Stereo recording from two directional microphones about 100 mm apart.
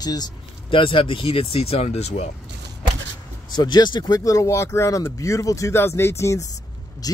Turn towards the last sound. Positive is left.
turn(degrees=30)  # may be behind; listen again after turning